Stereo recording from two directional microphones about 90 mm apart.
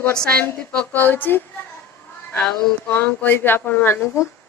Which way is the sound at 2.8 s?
20° left (ahead or behind).